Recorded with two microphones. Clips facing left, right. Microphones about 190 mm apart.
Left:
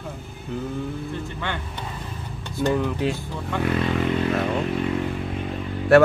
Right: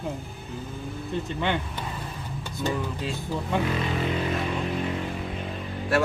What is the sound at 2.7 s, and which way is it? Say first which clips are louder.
Speech: left 7 dB; 65° left (ahead or behind).